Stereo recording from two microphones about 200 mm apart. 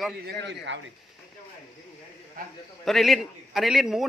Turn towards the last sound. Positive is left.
turn(degrees=0)  # may be behind; listen again after turning